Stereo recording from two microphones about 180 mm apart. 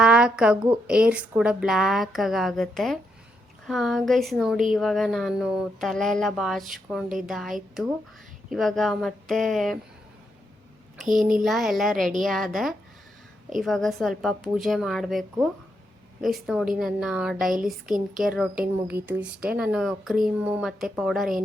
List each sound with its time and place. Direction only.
0.0 s a sound: 5° right (ahead or behind)
0.7 s speech: 5° right (ahead or behind)
10.9 s a child's voice: centre (ahead or behind)